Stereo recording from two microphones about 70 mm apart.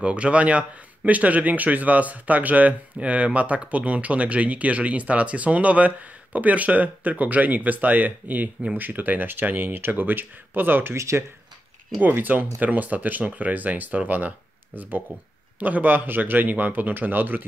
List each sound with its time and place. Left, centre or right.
0.0 s a man's voice: centre
11.0 s speech: right
12.0 s a man's voice: right